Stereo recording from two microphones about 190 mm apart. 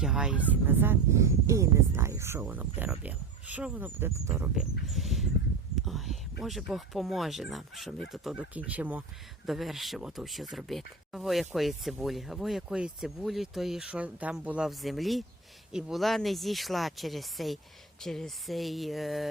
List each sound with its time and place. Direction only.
0.0 s speech: 5° right (ahead or behind)
5.7 s a sound: centre (ahead or behind)
6.4 s speech: centre (ahead or behind)